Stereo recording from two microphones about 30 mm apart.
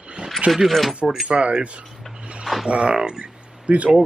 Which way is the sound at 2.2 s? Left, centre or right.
Right.